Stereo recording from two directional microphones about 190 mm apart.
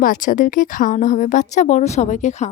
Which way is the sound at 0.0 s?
45° left (ahead or behind).